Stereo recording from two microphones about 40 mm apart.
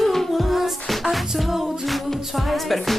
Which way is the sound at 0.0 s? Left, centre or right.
Centre.